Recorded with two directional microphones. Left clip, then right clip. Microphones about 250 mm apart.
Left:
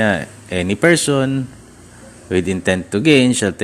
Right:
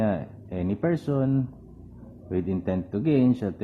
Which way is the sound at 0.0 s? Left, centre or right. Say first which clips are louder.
Left 10 dB; left.